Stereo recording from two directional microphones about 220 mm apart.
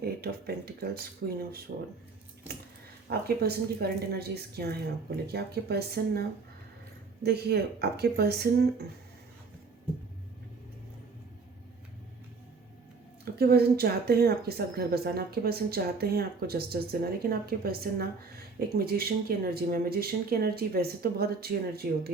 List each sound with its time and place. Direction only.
0.0 s speech: 45° right (ahead or behind)
3.1 s speech: 45° right (ahead or behind)
13.3 s speech: 45° right (ahead or behind)